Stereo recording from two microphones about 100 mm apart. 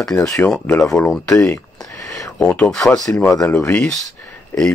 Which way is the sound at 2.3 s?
15° left (ahead or behind).